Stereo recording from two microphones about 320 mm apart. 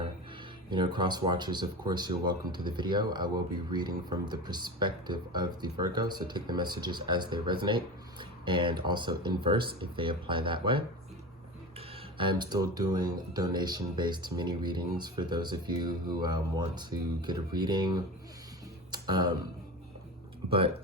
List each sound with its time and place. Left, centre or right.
0.7 s speech: centre
12.1 s speech: centre